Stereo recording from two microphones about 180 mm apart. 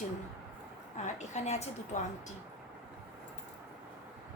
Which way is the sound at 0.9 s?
40° left (ahead or behind).